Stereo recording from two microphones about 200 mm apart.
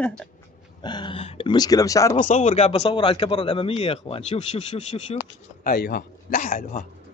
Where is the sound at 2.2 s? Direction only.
35° left (ahead or behind).